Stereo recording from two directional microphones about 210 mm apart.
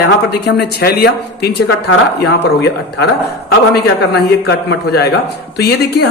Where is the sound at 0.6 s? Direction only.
50° left (ahead or behind).